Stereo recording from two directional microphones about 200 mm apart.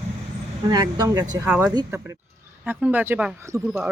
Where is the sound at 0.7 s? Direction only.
20° right (ahead or behind).